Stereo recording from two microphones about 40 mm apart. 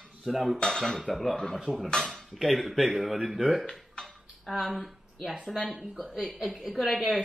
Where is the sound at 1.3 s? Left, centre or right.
Centre.